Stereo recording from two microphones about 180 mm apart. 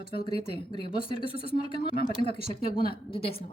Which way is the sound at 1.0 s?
30° left (ahead or behind).